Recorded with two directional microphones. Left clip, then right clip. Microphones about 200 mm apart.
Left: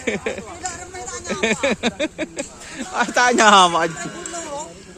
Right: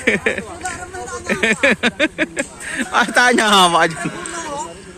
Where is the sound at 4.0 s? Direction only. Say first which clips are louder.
Right 4 dB; 55° left (ahead or behind).